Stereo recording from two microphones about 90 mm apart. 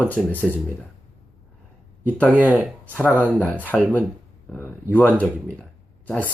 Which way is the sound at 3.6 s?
15° left (ahead or behind).